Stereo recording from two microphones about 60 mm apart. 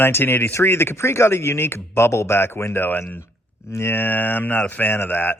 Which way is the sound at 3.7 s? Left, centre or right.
Left.